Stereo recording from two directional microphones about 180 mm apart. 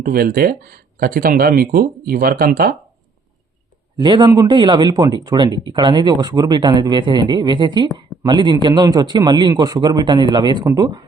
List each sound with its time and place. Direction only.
0.0 s speech: 55° right (ahead or behind)
4.0 s speech: 25° right (ahead or behind)